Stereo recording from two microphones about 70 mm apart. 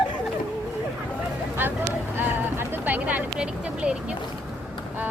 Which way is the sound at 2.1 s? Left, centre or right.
Right.